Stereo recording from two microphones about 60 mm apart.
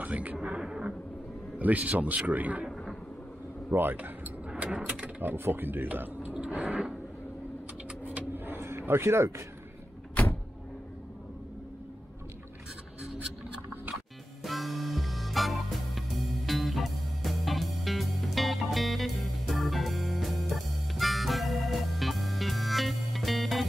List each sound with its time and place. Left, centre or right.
0.0 s a sound: right
1.6 s a man's voice: right
3.7 s a man's voice: right
4.7 s speech: centre
5.2 s speech: right
6.3 s a sound: centre
8.0 s vehicle: right
14.4 s music: centre